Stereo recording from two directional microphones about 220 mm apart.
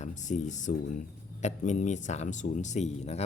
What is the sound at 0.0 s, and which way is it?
Speech, 35° left (ahead or behind).